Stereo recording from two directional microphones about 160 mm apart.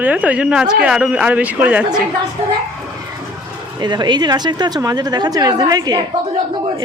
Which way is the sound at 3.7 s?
25° right (ahead or behind).